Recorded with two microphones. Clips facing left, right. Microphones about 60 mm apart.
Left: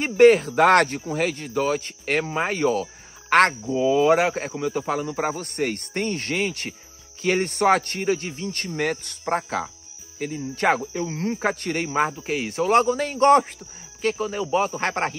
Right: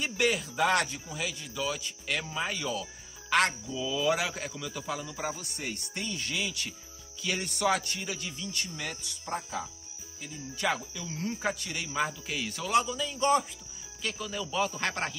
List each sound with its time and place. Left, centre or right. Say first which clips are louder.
0.0 s speech: left 14 dB; left
10.1 s speech: left 13 dB; left
14.0 s a man's voice: left 11 dB; left